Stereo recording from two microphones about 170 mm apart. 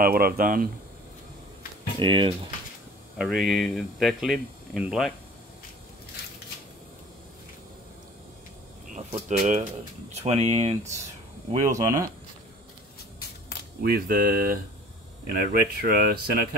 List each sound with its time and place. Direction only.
0.0 s speech: 60° right (ahead or behind)
2.0 s speech: 30° right (ahead or behind)
3.2 s speech: centre (ahead or behind)
8.9 s speech: 45° right (ahead or behind)
11.7 s speech: 20° right (ahead or behind)
13.8 s speech: 60° right (ahead or behind)